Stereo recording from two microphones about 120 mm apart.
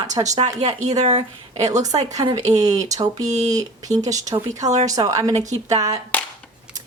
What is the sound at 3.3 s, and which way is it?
Speech, 75° right (ahead or behind).